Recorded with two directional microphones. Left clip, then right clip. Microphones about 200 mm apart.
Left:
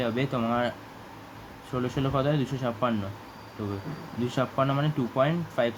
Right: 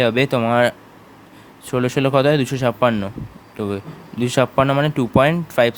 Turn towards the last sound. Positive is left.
turn(degrees=-50)  # may be behind; listen again after turning